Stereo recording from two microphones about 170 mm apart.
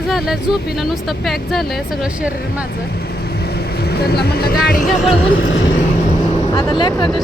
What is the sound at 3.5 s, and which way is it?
Vehicle, 70° left (ahead or behind).